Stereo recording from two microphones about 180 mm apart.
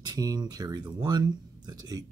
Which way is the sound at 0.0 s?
20° right (ahead or behind).